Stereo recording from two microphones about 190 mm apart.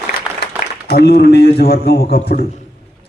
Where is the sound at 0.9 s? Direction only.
60° left (ahead or behind).